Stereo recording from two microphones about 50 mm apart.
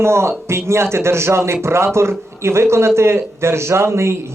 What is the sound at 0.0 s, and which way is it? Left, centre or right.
Speech, right.